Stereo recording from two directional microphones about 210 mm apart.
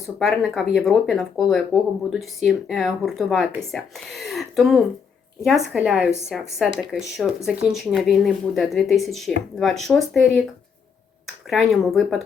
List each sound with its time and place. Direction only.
0.0 s speech: centre (ahead or behind)
11.4 s speech: centre (ahead or behind)